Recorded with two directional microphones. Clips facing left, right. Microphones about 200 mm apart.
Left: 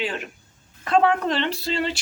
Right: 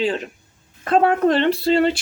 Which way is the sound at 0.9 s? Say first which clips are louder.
Right 4 dB; 50° right (ahead or behind).